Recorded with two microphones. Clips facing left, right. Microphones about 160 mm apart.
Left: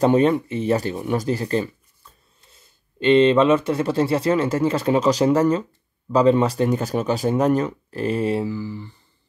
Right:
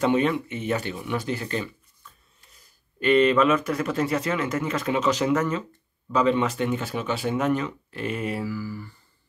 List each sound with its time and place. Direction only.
0.0 s speech: 40° left (ahead or behind); by 8.9 s 20° left (ahead or behind)